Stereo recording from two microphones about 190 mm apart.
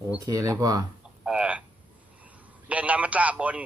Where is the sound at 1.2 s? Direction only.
5° right (ahead or behind).